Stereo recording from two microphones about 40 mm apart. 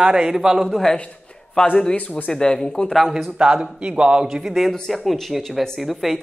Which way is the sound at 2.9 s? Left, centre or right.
Centre.